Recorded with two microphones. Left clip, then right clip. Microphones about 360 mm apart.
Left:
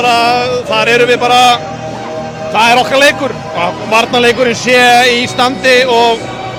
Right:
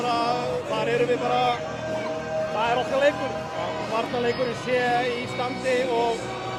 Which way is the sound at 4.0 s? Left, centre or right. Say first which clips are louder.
Left 17 dB; left.